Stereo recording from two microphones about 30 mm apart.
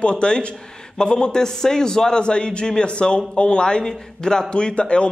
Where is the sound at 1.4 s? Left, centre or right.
Centre; by 5.1 s left.